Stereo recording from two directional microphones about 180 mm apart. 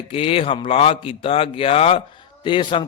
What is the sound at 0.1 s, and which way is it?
A man's voice, 30° left (ahead or behind).